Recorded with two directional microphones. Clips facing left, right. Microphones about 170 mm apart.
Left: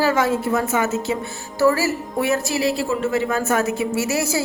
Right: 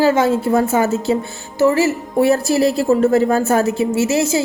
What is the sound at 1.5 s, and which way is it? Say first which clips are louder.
A woman's voice: right 4 dB; 20° right (ahead or behind).